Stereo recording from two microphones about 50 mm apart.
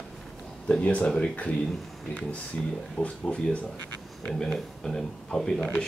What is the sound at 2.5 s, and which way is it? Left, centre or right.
Speech, left.